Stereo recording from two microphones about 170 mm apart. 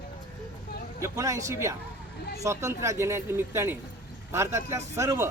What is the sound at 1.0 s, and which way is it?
Speech, 20° right (ahead or behind).